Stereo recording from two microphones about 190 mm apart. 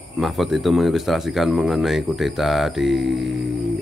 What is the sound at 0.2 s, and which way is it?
Speech, centre (ahead or behind).